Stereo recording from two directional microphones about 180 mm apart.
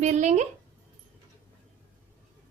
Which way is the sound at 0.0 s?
40° right (ahead or behind).